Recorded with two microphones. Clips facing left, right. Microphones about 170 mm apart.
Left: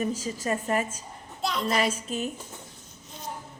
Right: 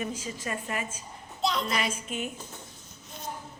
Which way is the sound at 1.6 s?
35° left (ahead or behind).